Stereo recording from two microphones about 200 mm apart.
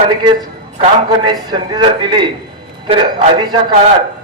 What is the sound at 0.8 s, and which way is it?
A man's voice, 25° right (ahead or behind).